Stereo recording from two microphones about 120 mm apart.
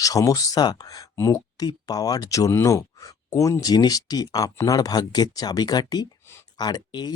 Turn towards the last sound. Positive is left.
turn(degrees=35)  # may be behind; listen again after turning